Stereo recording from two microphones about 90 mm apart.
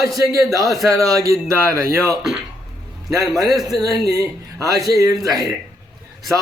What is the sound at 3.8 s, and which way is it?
Speech, 40° right (ahead or behind).